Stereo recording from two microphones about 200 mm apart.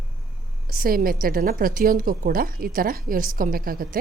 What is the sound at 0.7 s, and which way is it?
A woman's voice, 45° right (ahead or behind).